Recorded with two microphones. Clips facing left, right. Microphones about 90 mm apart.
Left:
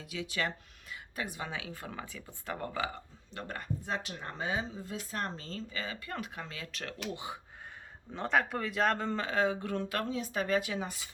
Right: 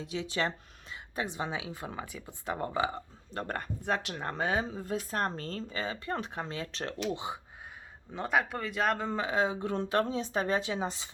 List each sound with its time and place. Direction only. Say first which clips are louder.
0.0 s speech: right 3 dB; 30° right (ahead or behind)
3.3 s speech: right 3 dB; 50° right (ahead or behind)
5.7 s speech: right 5 dB; 30° right (ahead or behind)
8.1 s speech: even; 5° right (ahead or behind); by 11.1 s 25° right (ahead or behind)